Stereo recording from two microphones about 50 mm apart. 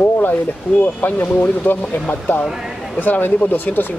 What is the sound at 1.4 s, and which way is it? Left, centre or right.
Speech, left.